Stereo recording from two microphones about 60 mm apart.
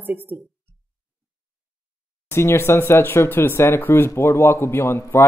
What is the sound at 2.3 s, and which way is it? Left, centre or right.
Speech, left.